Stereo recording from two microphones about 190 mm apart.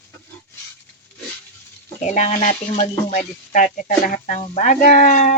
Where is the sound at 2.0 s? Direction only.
40° left (ahead or behind).